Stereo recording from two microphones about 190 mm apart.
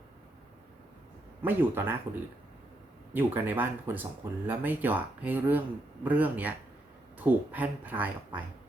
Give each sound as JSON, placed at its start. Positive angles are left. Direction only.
{"t": 1.4, "sound": "speech", "side_deg": -10}
{"t": 3.1, "sound": "speech", "side_deg": -10}